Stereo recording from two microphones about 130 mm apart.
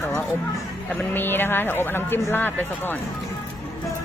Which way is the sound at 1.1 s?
15° left (ahead or behind).